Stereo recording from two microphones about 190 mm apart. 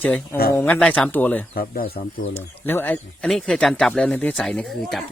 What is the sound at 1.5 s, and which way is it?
Speech, 50° left (ahead or behind).